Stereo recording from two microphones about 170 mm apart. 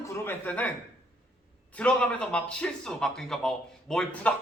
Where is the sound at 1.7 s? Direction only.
5° left (ahead or behind).